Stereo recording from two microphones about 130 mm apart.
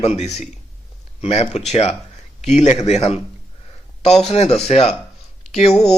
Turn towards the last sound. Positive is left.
turn(degrees=55)  # may be behind; listen again after turning